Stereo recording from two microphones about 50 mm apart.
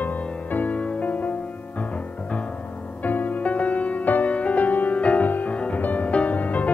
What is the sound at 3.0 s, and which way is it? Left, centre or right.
Music, left.